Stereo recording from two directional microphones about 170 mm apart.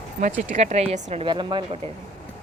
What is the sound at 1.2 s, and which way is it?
Speech, 25° right (ahead or behind).